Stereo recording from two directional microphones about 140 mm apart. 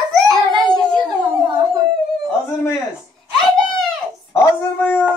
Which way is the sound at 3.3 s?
Centre (ahead or behind).